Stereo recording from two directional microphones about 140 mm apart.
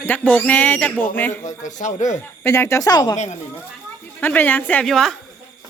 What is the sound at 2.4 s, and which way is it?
Speech, 15° left (ahead or behind).